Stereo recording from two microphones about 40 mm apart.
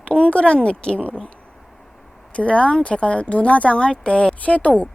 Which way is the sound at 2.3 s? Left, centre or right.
Left.